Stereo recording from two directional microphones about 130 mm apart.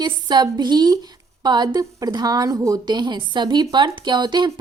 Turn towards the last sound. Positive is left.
turn(degrees=-35)  # may be behind; listen again after turning